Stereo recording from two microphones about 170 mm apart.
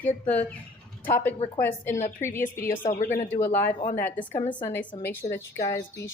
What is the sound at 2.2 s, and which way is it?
A woman's voice, 15° left (ahead or behind).